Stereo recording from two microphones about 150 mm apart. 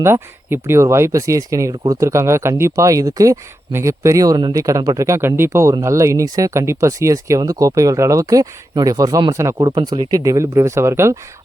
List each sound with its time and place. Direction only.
0.0 s speech: 15° right (ahead or behind)